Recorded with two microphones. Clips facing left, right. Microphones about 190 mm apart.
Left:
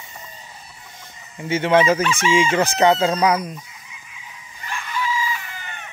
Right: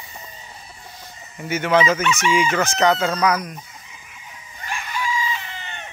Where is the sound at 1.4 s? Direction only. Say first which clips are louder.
Left 2 dB; 25° left (ahead or behind).